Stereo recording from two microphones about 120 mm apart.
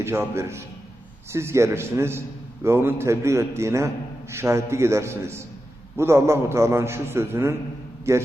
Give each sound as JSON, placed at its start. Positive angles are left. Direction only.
{"t": 0.0, "sound": "a man's voice", "side_deg": -20}